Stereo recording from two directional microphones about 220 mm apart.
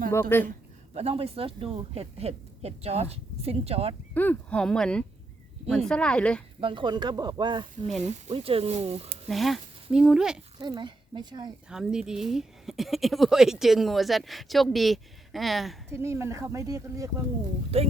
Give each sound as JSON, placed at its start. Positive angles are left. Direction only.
{"t": 0.1, "sound": "speech", "side_deg": 10}
{"t": 0.9, "sound": "speech", "side_deg": -25}
{"t": 4.1, "sound": "a woman's voice", "side_deg": 10}
{"t": 6.6, "sound": "speech", "side_deg": -20}
{"t": 9.3, "sound": "a woman's voice", "side_deg": 0}
{"t": 10.6, "sound": "speech", "side_deg": -20}
{"t": 11.7, "sound": "a woman's voice", "side_deg": -5}
{"t": 15.9, "sound": "speech", "side_deg": -10}
{"t": 17.7, "sound": "speech", "side_deg": -25}